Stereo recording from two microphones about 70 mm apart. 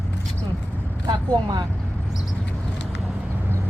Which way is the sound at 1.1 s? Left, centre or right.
Right.